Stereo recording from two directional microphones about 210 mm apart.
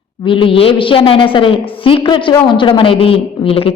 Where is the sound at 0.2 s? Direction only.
25° left (ahead or behind).